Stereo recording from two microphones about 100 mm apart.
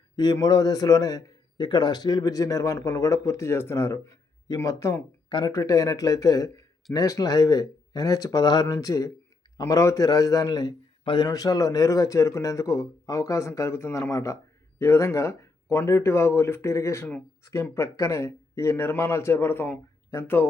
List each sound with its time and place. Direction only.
0.2 s a man's voice: 40° left (ahead or behind)
11.0 s speech: 50° left (ahead or behind)
11.3 s a man's voice: 40° left (ahead or behind); by 20.5 s 20° left (ahead or behind)